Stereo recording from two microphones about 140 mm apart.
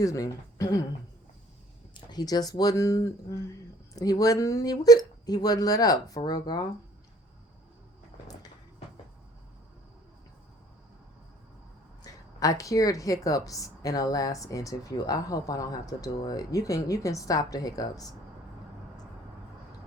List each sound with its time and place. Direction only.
0.0 s a woman's voice: 25° left (ahead or behind)
1.9 s a woman's voice: 30° left (ahead or behind)
12.0 s a woman's voice: 25° left (ahead or behind)